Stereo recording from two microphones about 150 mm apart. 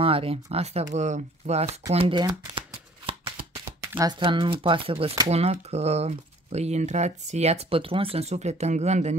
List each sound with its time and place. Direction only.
0.0 s speech: 40° right (ahead or behind)
3.1 s shuffling cards: 40° right (ahead or behind)
3.5 s shuffling cards: 20° right (ahead or behind)
4.2 s speech: 35° right (ahead or behind)
5.3 s speech: 45° right (ahead or behind)